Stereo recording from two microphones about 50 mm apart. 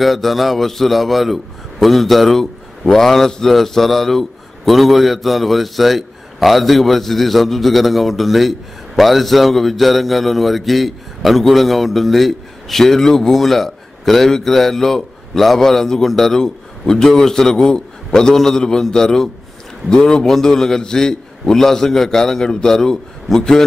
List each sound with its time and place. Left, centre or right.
0.0 s a man's voice: centre